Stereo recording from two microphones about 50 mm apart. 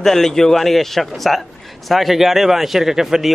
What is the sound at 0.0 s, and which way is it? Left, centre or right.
Speech, centre.